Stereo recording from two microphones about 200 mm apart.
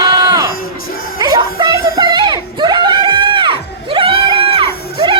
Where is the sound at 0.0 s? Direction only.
20° right (ahead or behind).